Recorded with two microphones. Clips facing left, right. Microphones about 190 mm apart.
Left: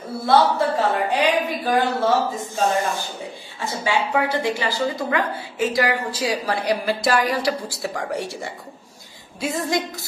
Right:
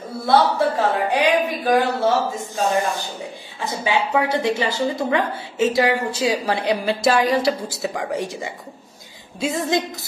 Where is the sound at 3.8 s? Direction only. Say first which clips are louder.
Right 1 dB; 20° right (ahead or behind).